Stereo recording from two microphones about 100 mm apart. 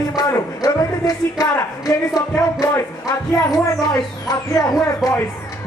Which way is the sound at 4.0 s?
40° left (ahead or behind).